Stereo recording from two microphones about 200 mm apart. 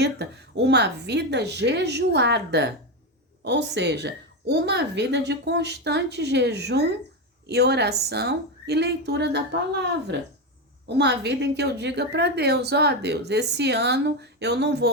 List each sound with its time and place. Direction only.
0.0 s a woman's voice: 60° right (ahead or behind)
10.8 s a woman's voice: 60° right (ahead or behind)